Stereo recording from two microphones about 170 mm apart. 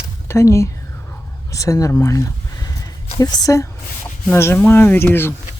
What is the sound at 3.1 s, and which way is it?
A woman's voice, 20° left (ahead or behind).